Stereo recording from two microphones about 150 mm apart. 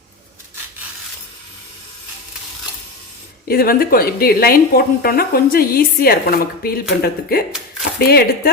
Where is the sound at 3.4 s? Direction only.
80° left.